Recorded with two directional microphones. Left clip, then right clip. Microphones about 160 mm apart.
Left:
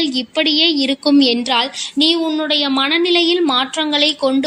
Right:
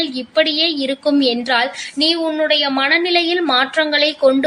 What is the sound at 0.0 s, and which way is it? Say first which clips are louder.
A woman's voice: right 1 dB; 40° left (ahead or behind).